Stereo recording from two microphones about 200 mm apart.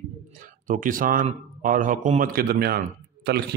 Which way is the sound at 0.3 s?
45° right (ahead or behind).